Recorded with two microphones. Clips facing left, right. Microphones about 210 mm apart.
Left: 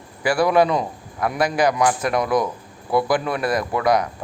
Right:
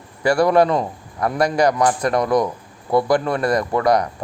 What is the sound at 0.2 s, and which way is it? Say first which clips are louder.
Speech: right 2 dB; 5° left (ahead or behind).